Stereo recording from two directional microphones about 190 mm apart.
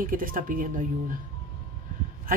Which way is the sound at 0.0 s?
45° right (ahead or behind).